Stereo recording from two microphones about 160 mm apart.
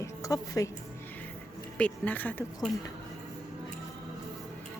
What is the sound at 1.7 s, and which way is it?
Speech, 10° left (ahead or behind).